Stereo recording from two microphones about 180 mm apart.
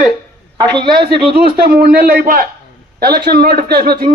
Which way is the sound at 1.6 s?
55° right (ahead or behind).